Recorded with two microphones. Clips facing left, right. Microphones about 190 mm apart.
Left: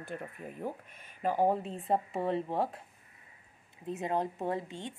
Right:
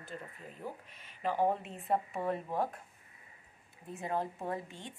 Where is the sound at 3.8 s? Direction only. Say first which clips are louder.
Left 4 dB; 20° left (ahead or behind).